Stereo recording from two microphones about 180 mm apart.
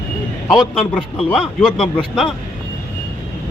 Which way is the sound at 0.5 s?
5° left (ahead or behind).